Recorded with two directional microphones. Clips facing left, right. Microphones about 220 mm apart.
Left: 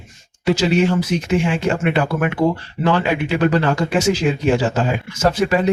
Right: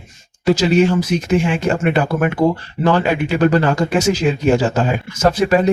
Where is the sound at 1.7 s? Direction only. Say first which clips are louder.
Right 3 dB; 40° right (ahead or behind).